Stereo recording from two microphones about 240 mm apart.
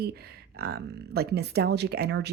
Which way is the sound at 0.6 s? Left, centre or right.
Right.